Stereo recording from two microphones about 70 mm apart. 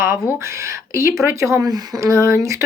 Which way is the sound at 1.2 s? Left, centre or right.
Right.